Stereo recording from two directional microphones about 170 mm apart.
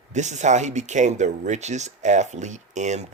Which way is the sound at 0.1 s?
45° right (ahead or behind).